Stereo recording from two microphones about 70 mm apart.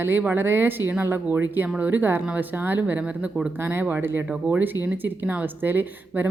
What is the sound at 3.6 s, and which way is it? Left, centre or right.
Speech, right.